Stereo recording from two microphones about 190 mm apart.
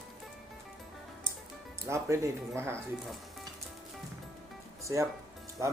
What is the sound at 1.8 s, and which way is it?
Speech, 15° right (ahead or behind).